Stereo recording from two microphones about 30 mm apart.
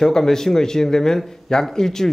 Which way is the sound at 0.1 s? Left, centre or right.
Centre.